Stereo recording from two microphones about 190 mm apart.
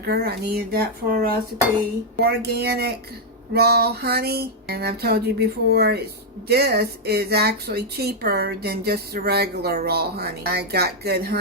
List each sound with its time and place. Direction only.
0.0 s speech: 55° right (ahead or behind)